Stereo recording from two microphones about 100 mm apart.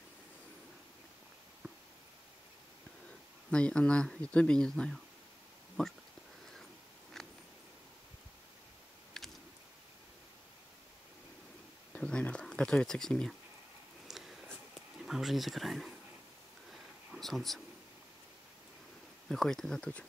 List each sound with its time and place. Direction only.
3.4 s speech: 10° left (ahead or behind)
7.2 s a sound: 5° left (ahead or behind)
11.9 s a sound: 10° left (ahead or behind)
15.0 s speech: 5° right (ahead or behind)
17.2 s speech: centre (ahead or behind)
19.2 s speech: 5° left (ahead or behind)